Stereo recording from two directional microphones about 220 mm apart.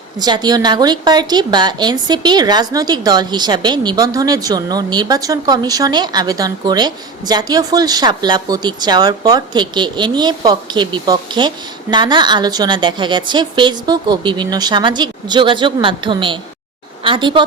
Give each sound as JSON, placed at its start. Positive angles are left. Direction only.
{"t": 0.2, "sound": "a woman's voice", "side_deg": -20}